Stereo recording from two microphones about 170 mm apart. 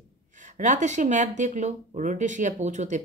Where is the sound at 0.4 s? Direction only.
45° right (ahead or behind).